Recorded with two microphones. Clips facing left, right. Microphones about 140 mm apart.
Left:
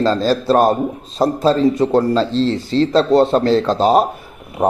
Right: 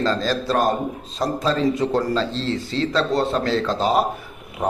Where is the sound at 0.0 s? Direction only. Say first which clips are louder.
Left 6 dB; 35° left (ahead or behind).